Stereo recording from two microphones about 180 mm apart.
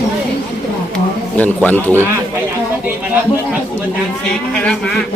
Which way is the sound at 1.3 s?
10° left (ahead or behind).